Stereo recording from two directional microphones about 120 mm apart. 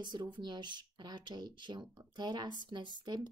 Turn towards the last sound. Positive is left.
turn(degrees=-35)  # may be behind; listen again after turning